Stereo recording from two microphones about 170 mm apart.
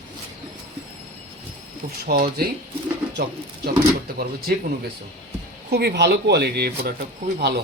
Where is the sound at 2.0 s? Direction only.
65° right (ahead or behind).